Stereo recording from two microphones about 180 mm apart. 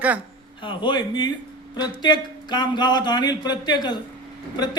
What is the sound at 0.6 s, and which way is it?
Speech, 25° left (ahead or behind).